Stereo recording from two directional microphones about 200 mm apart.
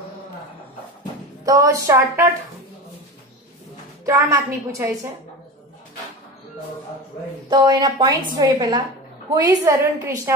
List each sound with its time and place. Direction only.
1.4 s a woman's voice: 15° right (ahead or behind)
4.0 s a woman's voice: 15° right (ahead or behind)
7.4 s a woman's voice: 20° right (ahead or behind)